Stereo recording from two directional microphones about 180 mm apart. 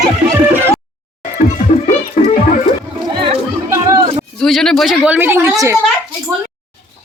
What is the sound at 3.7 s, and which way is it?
Music, 20° right (ahead or behind).